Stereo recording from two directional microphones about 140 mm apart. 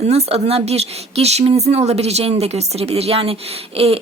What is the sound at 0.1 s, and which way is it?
Speech, 50° right (ahead or behind).